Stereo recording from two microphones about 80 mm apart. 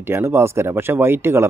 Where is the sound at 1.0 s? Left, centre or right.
Right.